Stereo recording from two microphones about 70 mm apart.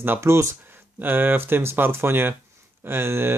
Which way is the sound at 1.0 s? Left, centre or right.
Right.